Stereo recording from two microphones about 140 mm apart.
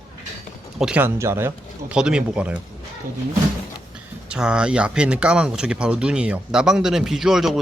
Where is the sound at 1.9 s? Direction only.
5° right (ahead or behind).